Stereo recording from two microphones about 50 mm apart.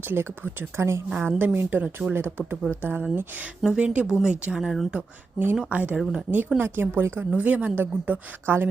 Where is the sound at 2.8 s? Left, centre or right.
Right.